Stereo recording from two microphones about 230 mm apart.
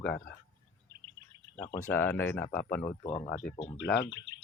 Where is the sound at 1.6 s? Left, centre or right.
Centre.